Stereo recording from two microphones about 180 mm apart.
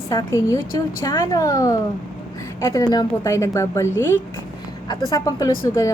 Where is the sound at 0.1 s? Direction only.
15° left (ahead or behind).